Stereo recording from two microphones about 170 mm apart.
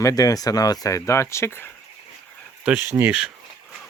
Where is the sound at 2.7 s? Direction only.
15° right (ahead or behind).